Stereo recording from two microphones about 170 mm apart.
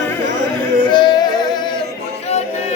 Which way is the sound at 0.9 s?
25° left (ahead or behind).